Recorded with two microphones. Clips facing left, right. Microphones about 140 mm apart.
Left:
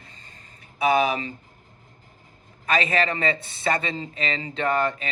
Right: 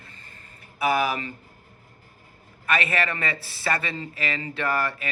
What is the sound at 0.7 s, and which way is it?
Speech, 25° left (ahead or behind).